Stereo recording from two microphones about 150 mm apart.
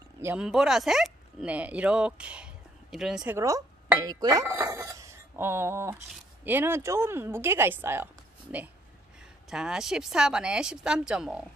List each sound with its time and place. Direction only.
0.2 s speech: 10° right (ahead or behind)
3.3 s speech: 20° right (ahead or behind)
4.6 s dishes: 15° right (ahead or behind)
6.4 s speech: 15° right (ahead or behind)